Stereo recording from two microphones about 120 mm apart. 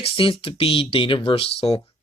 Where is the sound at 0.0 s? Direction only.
50° left (ahead or behind).